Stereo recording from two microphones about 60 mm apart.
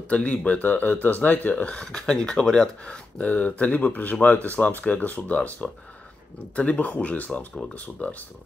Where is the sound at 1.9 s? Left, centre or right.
Centre.